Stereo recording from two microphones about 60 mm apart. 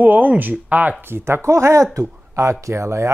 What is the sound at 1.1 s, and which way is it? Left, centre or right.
Speech, right.